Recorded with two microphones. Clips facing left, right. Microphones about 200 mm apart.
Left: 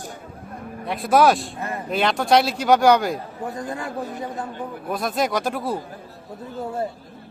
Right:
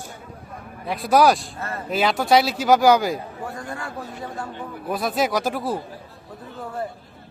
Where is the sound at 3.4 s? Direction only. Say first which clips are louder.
Left 3 dB; 20° left (ahead or behind).